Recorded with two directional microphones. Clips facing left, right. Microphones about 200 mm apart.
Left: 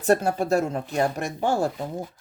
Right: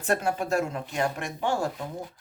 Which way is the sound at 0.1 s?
35° left (ahead or behind).